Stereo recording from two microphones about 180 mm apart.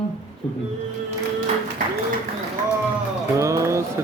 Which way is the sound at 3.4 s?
15° right (ahead or behind).